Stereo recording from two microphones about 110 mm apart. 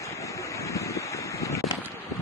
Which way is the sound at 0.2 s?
30° left (ahead or behind).